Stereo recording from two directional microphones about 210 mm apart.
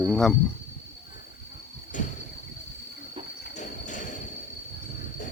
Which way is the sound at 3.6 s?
35° left (ahead or behind).